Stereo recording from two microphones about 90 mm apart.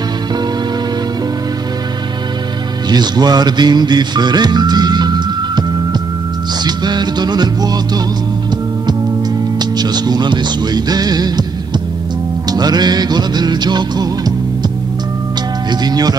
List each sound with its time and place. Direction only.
2.9 s music: 50° right (ahead or behind)
9.6 s speech: 50° right (ahead or behind)
12.4 s music: 50° right (ahead or behind)
15.7 s music: 50° right (ahead or behind)